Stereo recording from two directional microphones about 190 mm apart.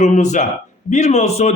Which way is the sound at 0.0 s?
40° left (ahead or behind).